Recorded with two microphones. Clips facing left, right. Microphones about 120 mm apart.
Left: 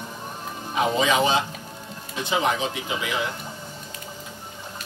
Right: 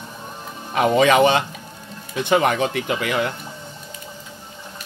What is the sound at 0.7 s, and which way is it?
Speech, 60° right (ahead or behind).